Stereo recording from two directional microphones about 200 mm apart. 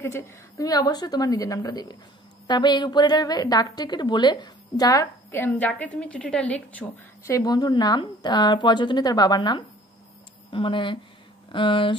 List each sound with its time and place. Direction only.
0.0 s a woman's voice: 15° left (ahead or behind)